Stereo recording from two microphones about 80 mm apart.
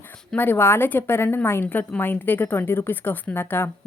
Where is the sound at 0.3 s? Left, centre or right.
Left.